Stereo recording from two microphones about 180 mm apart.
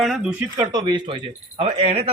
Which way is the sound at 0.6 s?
25° right (ahead or behind).